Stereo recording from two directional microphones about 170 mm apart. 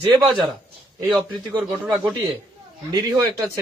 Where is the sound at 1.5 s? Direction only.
5° right (ahead or behind).